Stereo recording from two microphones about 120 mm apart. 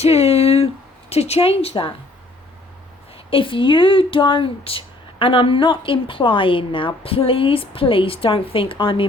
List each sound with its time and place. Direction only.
0.0 s a sound: 60° left (ahead or behind)
1.1 s a woman's voice: 60° left (ahead or behind)
3.2 s a woman's voice: 45° left (ahead or behind)